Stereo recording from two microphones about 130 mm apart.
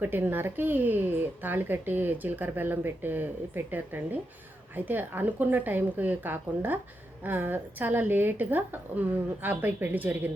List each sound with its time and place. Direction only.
0.0 s a woman's voice: 15° right (ahead or behind)